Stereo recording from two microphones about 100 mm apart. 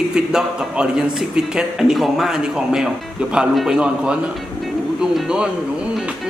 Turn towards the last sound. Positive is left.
turn(degrees=-10)  # may be behind; listen again after turning